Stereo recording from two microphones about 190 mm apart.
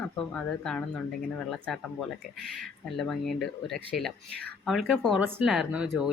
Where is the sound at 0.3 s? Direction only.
5° left (ahead or behind).